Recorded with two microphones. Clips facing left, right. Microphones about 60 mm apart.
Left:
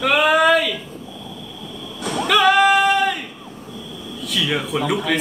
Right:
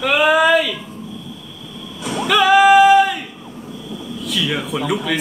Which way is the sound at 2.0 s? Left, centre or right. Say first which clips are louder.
Even; left.